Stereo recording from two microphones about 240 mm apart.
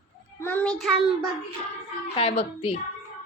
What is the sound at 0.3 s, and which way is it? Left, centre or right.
Child singing, centre.